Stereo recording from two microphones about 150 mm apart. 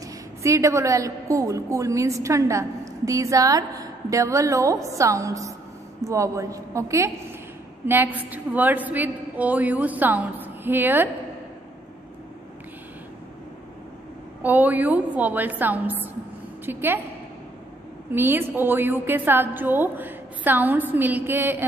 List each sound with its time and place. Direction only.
0.4 s a woman's voice: 20° right (ahead or behind)
14.4 s a woman's voice: 10° right (ahead or behind)
18.1 s a woman's voice: 15° right (ahead or behind)